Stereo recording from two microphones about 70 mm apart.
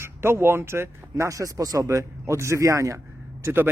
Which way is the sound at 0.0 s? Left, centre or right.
Right.